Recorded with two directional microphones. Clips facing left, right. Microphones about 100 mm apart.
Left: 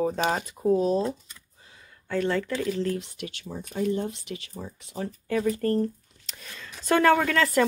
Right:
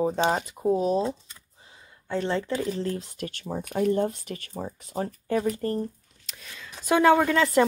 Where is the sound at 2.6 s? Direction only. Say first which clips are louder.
Left 1 dB; 30° right (ahead or behind).